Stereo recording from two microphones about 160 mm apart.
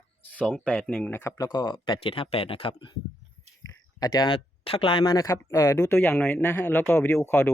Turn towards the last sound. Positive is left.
turn(degrees=10)  # may be behind; listen again after turning